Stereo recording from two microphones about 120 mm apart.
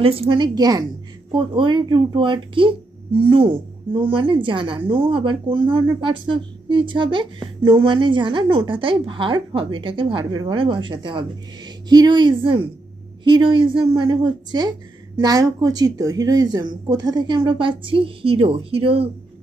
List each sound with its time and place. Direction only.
0.0 s a woman's voice: 50° right (ahead or behind)
0.6 s a woman's voice: 30° right (ahead or behind)
1.3 s a woman's voice: 45° right (ahead or behind)